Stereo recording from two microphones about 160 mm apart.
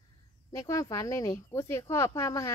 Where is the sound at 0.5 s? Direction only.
20° left (ahead or behind).